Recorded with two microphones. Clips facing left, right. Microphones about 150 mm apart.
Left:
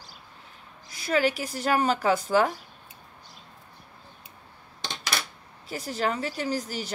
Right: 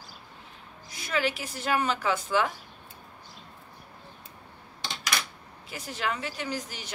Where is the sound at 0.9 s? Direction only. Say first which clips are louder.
Left 5 dB; 40° left (ahead or behind).